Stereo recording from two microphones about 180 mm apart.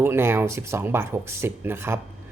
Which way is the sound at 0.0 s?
15° right (ahead or behind).